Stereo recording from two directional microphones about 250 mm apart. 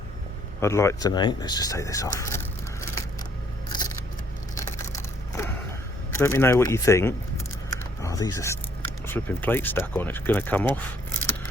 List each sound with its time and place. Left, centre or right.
0.6 s speech: centre
3.7 s scissors: centre
4.5 s a sound: centre
6.1 s speech: centre